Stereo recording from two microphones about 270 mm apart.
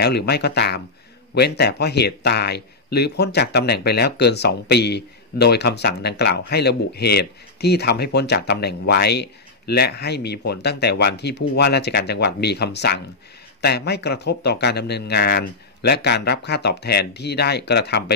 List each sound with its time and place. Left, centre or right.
0.0 s speech: left